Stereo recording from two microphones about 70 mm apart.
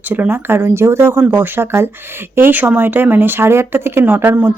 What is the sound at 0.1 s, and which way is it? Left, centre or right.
Speech, right.